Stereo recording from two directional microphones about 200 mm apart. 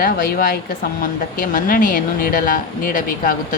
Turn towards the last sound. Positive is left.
turn(degrees=45)  # may be behind; listen again after turning